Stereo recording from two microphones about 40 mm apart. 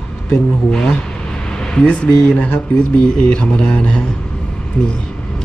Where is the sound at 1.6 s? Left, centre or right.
Left.